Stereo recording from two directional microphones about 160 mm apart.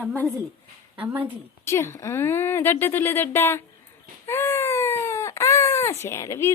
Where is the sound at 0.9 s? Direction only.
10° right (ahead or behind).